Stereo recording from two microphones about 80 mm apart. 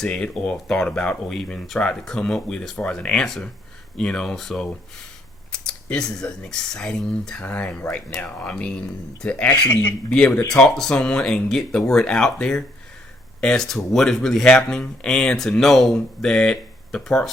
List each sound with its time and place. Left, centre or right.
0.0 s speech: centre
9.5 s speech: left
10.1 s speech: centre